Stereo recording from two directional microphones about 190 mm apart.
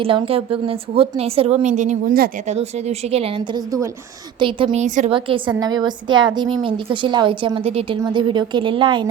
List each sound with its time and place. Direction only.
0.0 s a woman's voice: 30° right (ahead or behind); by 2.3 s 50° right (ahead or behind)
2.5 s a woman's voice: 35° right (ahead or behind)